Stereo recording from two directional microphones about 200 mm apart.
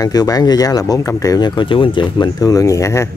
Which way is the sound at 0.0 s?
20° left (ahead or behind).